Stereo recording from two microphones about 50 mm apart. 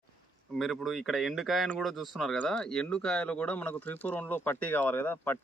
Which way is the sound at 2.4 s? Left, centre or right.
Centre.